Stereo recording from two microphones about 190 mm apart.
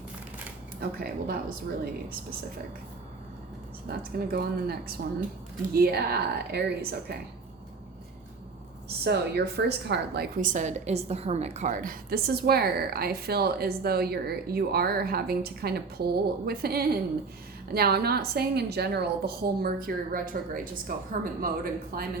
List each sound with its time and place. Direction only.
0.8 s a woman's voice: 50° right (ahead or behind)
3.8 s a woman's voice: 55° right (ahead or behind)
9.0 s a woman's voice: 60° right (ahead or behind)
10.4 s a woman's voice: 40° right (ahead or behind)